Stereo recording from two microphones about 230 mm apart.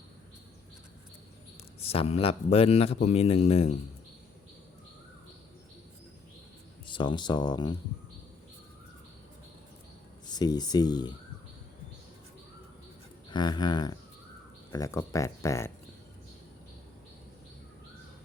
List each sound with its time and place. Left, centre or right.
1.9 s speech: left
6.8 s speech: left
10.2 s speech: centre
13.3 s speech: centre